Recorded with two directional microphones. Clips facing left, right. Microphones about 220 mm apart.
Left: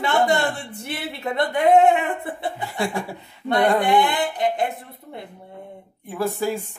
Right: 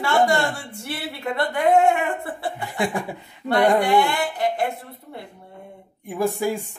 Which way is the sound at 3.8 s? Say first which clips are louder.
Even; 20° left (ahead or behind).